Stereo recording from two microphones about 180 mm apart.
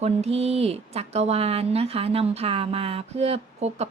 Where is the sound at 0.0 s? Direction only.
35° right (ahead or behind).